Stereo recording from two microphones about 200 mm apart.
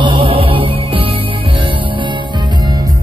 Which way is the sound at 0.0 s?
25° right (ahead or behind).